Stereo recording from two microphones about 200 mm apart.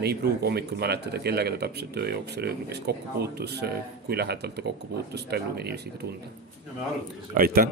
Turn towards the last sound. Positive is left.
turn(degrees=-45)  # may be behind; listen again after turning